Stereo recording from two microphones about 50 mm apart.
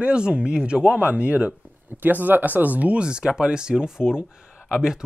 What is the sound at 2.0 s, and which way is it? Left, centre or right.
Speech, right.